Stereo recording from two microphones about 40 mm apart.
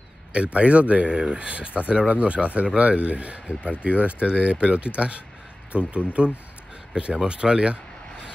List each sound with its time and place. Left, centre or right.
0.3 s speech: right
7.2 s speech: right